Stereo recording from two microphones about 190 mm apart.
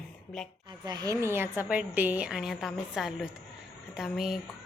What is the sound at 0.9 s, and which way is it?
A woman's voice, 20° right (ahead or behind).